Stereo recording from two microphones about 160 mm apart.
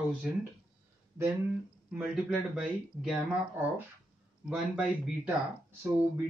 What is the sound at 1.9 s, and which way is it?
Speech, 5° right (ahead or behind).